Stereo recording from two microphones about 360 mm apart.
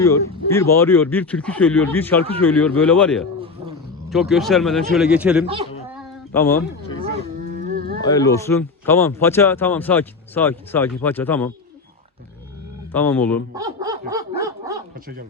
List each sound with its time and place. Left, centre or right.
0.5 s speech: centre
5.9 s a sound: centre
7.0 s cattle: right
8.0 s speech: centre
12.9 s speech: centre
13.5 s dog: centre